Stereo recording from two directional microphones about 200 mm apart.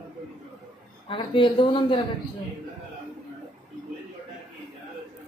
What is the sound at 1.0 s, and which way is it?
Speech, 25° left (ahead or behind).